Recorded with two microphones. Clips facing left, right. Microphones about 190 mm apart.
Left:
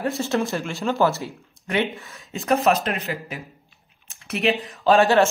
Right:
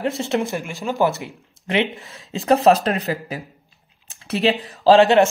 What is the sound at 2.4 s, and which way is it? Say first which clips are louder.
Speech: right 5 dB; 35° right (ahead or behind).